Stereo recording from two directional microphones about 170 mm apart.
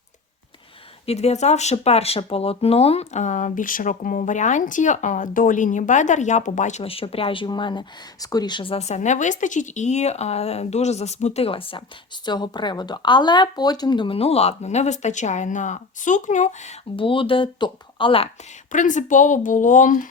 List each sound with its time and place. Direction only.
1.0 s speech: 40° left (ahead or behind)
17.0 s speech: 30° left (ahead or behind)
18.7 s speech: 50° left (ahead or behind)